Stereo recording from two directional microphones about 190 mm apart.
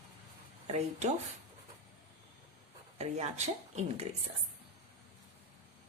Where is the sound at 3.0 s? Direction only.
35° right (ahead or behind).